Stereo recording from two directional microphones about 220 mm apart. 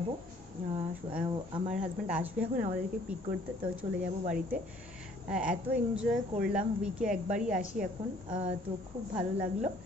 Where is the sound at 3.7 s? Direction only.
5° right (ahead or behind).